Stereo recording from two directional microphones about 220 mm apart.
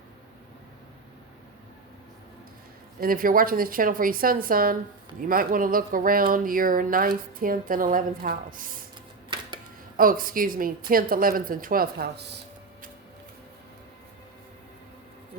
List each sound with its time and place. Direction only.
3.0 s a woman's voice: 40° right (ahead or behind)
10.0 s a woman's voice: 40° right (ahead or behind)